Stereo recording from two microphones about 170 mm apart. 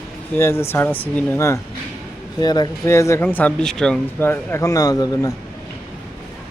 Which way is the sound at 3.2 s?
5° left (ahead or behind).